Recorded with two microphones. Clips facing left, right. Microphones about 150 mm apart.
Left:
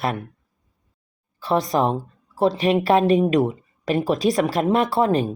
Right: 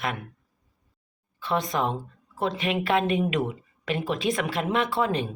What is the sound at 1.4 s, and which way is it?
A woman's voice, 35° left (ahead or behind).